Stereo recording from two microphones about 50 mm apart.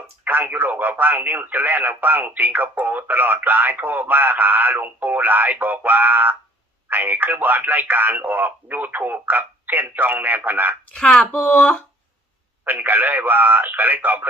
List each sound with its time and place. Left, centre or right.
0.4 s speech: right
10.9 s speech: centre
12.6 s speech: right